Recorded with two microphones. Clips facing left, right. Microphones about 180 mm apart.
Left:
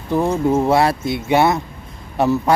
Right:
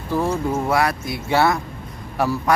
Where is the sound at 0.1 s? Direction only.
20° left (ahead or behind).